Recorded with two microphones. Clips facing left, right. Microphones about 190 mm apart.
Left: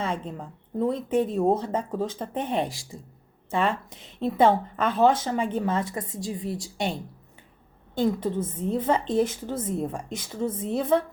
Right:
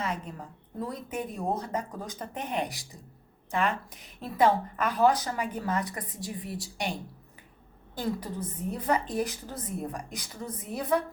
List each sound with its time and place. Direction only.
0.0 s a woman's voice: 25° left (ahead or behind)
7.9 s a woman's voice: 25° left (ahead or behind)